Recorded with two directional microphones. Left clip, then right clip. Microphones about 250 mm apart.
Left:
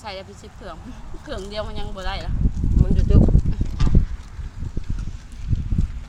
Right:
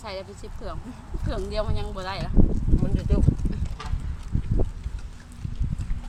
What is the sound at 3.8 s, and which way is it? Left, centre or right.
Clip-clop, left.